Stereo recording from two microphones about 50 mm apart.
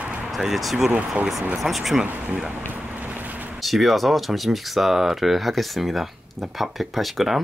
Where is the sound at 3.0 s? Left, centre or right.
Right.